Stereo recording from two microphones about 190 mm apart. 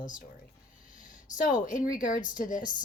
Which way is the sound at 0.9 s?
45° left (ahead or behind).